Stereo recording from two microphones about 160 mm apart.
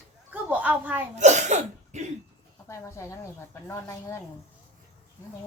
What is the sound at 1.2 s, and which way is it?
Cough, 45° right (ahead or behind).